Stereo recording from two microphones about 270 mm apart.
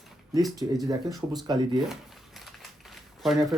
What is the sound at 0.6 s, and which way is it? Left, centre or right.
Speech, centre.